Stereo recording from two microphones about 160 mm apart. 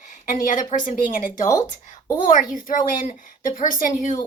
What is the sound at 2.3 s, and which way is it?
A woman's voice, 55° left (ahead or behind).